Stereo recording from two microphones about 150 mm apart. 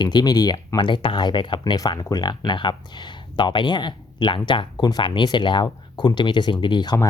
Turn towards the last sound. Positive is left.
turn(degrees=30)  # may be behind; listen again after turning